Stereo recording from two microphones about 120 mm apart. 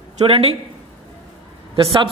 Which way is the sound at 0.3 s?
55° right (ahead or behind).